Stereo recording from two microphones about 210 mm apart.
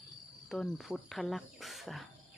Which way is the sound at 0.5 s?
5° left (ahead or behind).